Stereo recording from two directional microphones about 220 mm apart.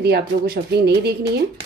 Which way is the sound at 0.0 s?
50° right (ahead or behind).